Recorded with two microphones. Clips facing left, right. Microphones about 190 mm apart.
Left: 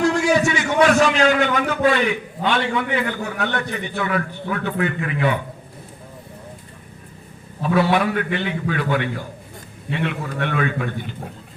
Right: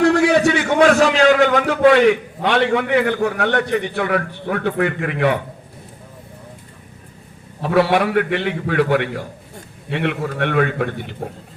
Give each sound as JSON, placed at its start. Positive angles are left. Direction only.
{"t": 0.0, "sound": "a sound", "side_deg": -65}
{"t": 1.6, "sound": "a man's voice", "side_deg": -75}
{"t": 7.6, "sound": "a man's voice", "side_deg": -70}